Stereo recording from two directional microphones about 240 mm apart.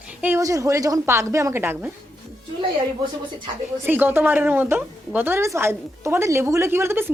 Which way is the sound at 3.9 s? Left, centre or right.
Centre.